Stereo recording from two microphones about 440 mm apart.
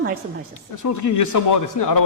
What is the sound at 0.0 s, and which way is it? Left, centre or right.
Speech, right.